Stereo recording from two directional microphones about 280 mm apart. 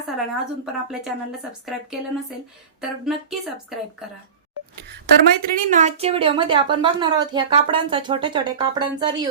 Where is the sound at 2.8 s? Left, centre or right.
Centre.